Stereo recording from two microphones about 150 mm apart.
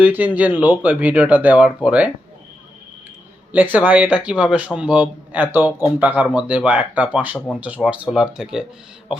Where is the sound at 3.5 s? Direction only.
10° right (ahead or behind).